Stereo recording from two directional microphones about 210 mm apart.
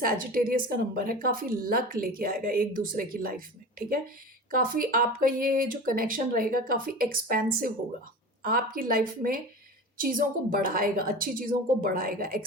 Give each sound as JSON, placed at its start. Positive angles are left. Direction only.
{"t": 0.0, "sound": "a woman's voice", "side_deg": -45}
{"t": 8.4, "sound": "a woman's voice", "side_deg": -45}